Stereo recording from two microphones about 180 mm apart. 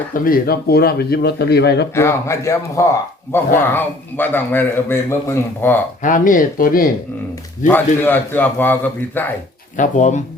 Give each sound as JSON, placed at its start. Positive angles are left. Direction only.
{"t": 0.1, "sound": "speech", "side_deg": 50}
{"t": 2.0, "sound": "a man's voice", "side_deg": 15}
{"t": 6.0, "sound": "speech", "side_deg": 45}
{"t": 7.7, "sound": "a man's voice", "side_deg": 10}
{"t": 9.7, "sound": "speech", "side_deg": 45}